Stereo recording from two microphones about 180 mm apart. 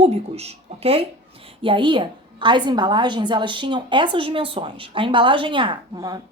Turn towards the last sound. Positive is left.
turn(degrees=-20)  # may be behind; listen again after turning